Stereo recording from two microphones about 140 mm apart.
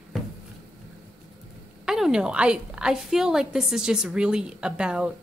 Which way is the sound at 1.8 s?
5° right (ahead or behind).